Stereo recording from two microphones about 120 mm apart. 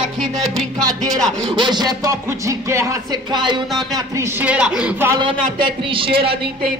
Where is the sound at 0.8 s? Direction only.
30° right (ahead or behind).